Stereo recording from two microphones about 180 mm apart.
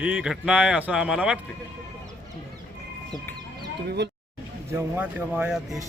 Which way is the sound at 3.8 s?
65° right (ahead or behind).